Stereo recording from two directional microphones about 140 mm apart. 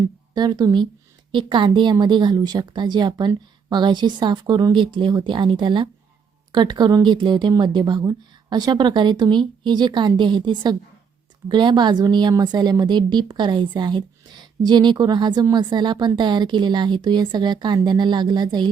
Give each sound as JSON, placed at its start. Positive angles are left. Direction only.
{"t": 0.3, "sound": "a woman's voice", "side_deg": -30}